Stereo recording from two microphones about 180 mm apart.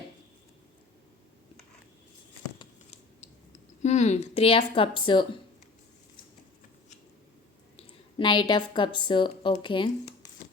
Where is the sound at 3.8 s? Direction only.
40° left (ahead or behind).